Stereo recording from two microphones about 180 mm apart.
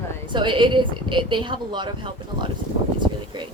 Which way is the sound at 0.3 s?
25° right (ahead or behind).